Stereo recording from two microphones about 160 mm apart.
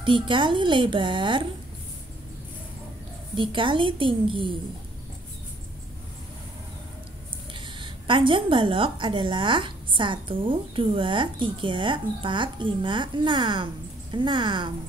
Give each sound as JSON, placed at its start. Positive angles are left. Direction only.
{"t": 0.0, "sound": "a woman's voice", "side_deg": -30}
{"t": 3.3, "sound": "a woman's voice", "side_deg": -30}
{"t": 7.8, "sound": "a woman's voice", "side_deg": -30}